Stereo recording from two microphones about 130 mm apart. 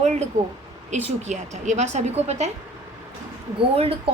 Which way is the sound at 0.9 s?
65° right (ahead or behind).